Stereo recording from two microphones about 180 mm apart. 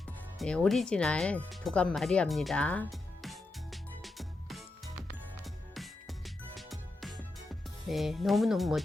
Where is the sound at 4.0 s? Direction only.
Centre (ahead or behind).